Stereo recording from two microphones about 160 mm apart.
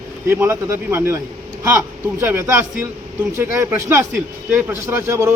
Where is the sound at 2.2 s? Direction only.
15° right (ahead or behind).